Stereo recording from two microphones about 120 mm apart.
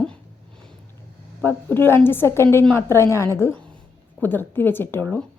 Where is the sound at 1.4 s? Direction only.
15° left (ahead or behind).